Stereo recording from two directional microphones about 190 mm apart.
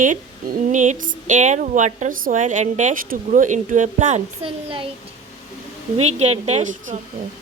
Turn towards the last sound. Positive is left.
turn(degrees=-40)  # may be behind; listen again after turning